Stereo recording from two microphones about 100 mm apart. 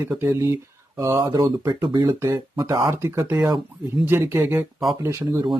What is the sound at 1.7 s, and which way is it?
Speech, 45° right (ahead or behind).